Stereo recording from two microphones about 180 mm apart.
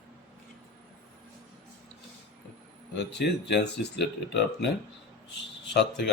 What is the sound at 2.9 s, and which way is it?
Speech, 70° left (ahead or behind).